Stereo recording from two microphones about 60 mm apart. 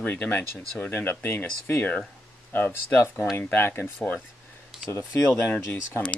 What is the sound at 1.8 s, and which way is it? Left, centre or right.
Speech, left.